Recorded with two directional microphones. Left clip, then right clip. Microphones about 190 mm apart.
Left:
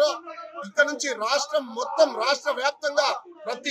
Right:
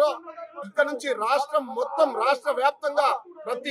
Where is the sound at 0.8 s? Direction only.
25° right (ahead or behind).